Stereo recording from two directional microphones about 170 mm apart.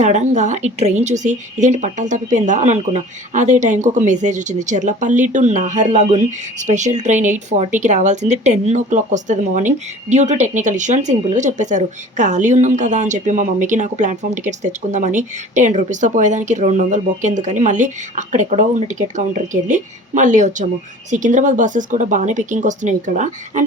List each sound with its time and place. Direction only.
0.0 s speech: 45° right (ahead or behind)